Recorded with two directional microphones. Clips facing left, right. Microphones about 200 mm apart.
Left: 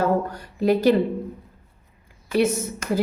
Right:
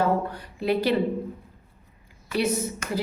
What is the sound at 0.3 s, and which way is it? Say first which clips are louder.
Speech: left 5 dB; 45° left (ahead or behind).